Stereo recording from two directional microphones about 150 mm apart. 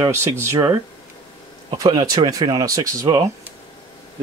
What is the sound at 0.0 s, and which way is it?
Speech, 20° right (ahead or behind).